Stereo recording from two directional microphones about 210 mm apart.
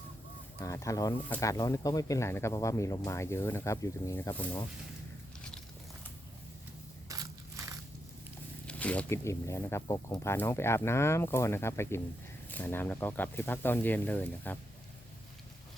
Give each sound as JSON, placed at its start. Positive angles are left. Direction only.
{"t": 0.6, "sound": "speech", "side_deg": 15}
{"t": 7.1, "sound": "biting", "side_deg": -15}
{"t": 8.6, "sound": "speech", "side_deg": 5}